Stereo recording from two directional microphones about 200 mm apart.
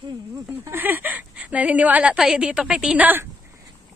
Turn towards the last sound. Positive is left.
turn(degrees=-10)  # may be behind; listen again after turning